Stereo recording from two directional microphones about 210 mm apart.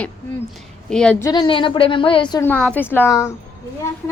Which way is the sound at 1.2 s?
20° left (ahead or behind).